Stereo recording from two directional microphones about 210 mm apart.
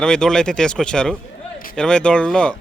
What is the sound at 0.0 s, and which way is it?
Speech, 5° left (ahead or behind).